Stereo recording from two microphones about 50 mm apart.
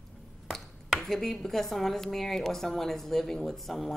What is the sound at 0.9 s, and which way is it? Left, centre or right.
A woman's voice, centre.